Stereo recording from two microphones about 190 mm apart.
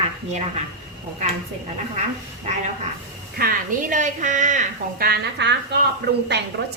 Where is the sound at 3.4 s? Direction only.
45° right (ahead or behind).